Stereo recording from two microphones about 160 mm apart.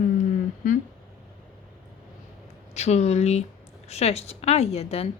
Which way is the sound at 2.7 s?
45° left (ahead or behind).